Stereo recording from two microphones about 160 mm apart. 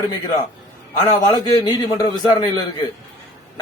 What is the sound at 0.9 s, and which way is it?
A man's voice, 25° left (ahead or behind).